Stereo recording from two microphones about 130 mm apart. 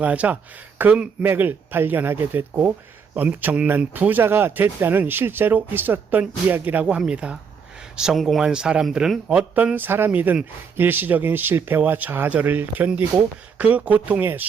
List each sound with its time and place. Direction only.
0.0 s speech: 10° right (ahead or behind)